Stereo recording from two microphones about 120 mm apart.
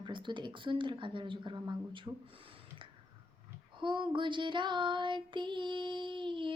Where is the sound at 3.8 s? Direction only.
40° right (ahead or behind).